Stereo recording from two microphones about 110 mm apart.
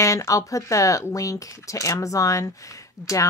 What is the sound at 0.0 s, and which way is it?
Speech, 30° left (ahead or behind).